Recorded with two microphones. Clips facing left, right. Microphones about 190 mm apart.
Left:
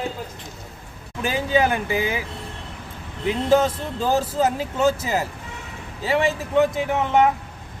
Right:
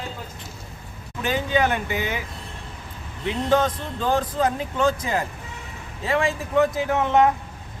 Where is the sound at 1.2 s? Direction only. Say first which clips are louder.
Left 2 dB; 10° left (ahead or behind).